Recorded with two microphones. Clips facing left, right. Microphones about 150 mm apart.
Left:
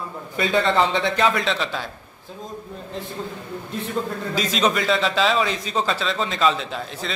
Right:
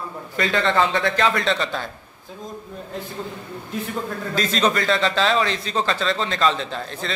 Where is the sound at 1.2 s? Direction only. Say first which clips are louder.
Even; 5° left (ahead or behind).